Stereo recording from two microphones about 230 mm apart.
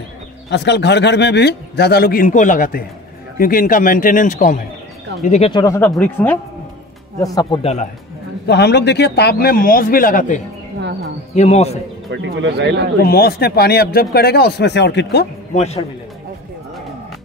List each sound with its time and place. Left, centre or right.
0.5 s a man's voice: left
5.5 s speech: centre
7.6 s a man's voice: left
8.5 s a man's voice: left
10.8 s bird: right
11.3 s a man's voice: left
12.1 s speech: right
13.0 s a man's voice: left
15.5 s a man's voice: left